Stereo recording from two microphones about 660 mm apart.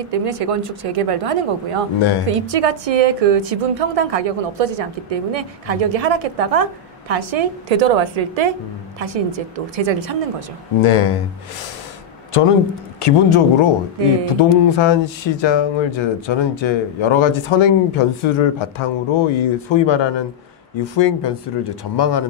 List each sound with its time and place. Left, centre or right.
0.0 s a woman's voice: right
10.8 s speech: left
13.0 s speech: left